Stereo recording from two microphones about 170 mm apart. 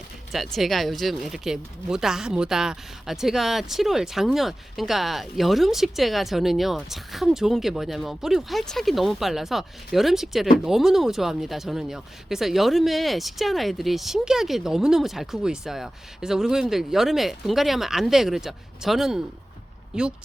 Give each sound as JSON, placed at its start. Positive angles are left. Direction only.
{"t": 0.3, "sound": "speech", "side_deg": 0}